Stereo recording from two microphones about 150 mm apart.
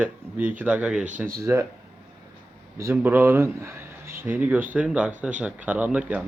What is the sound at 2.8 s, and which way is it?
Speech, 15° right (ahead or behind).